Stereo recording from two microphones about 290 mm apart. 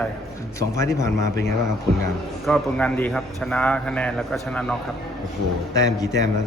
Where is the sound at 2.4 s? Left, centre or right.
Centre.